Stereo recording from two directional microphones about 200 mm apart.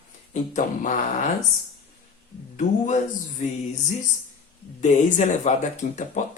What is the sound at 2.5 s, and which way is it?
Speech, 40° left (ahead or behind).